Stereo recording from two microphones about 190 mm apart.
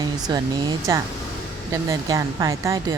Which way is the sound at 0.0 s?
20° right (ahead or behind).